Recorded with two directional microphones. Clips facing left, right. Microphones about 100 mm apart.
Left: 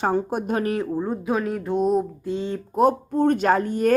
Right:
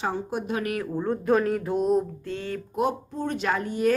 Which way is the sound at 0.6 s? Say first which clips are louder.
Left 5 dB; 30° left (ahead or behind).